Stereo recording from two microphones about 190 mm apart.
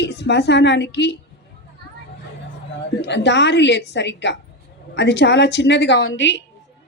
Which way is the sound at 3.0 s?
65° left (ahead or behind).